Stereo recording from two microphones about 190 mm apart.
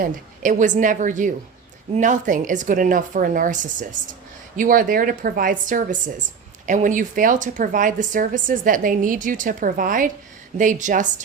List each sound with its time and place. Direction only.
0.0 s a woman's voice: 40° right (ahead or behind)